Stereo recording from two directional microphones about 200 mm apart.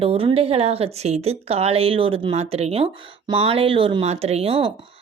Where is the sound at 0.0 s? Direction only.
25° right (ahead or behind).